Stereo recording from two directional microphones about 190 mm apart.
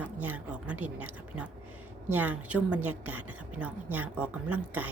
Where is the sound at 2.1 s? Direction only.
10° right (ahead or behind).